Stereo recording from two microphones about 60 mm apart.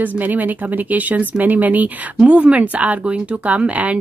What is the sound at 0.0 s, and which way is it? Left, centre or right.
Speech, right.